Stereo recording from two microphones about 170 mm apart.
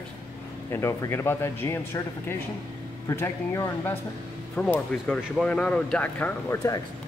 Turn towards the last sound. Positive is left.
turn(degrees=10)  # may be behind; listen again after turning